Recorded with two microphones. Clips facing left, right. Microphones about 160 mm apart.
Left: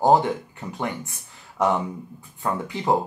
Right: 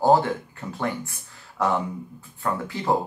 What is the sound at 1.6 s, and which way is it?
Speech, 20° left (ahead or behind).